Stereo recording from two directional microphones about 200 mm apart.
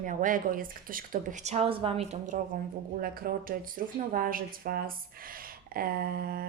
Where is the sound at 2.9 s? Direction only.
45° right (ahead or behind).